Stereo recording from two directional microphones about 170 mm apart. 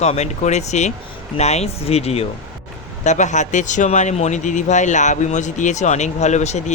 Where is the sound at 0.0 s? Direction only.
40° left (ahead or behind).